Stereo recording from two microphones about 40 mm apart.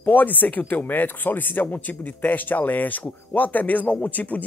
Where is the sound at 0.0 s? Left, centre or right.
Left.